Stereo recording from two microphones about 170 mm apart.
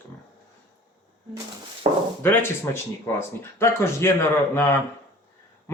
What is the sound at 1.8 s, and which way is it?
Speech, 30° right (ahead or behind).